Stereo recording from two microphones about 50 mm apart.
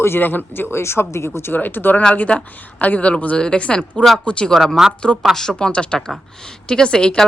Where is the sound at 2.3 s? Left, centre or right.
Centre.